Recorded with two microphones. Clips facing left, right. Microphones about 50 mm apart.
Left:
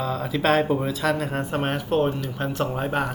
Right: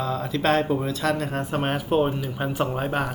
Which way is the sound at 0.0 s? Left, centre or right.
Centre.